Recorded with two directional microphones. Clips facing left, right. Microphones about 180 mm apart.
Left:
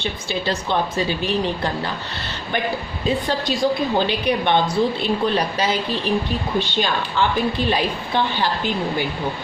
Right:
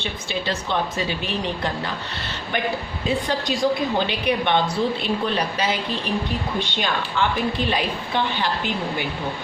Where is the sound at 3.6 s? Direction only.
30° left (ahead or behind).